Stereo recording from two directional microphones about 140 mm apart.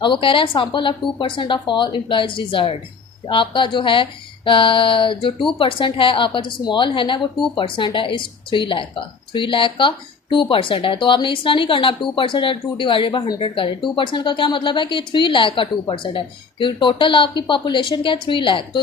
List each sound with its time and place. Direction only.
0.0 s speech: 35° left (ahead or behind)